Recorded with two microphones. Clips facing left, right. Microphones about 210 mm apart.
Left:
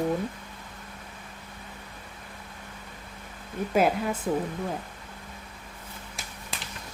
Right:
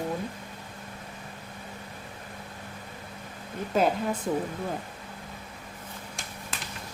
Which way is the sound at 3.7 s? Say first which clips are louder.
Left 1 dB; 10° left (ahead or behind).